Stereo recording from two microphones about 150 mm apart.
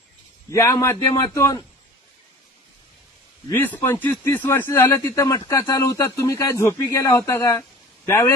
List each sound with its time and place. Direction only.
0.5 s speech: 20° left (ahead or behind)
3.5 s speech: 15° left (ahead or behind)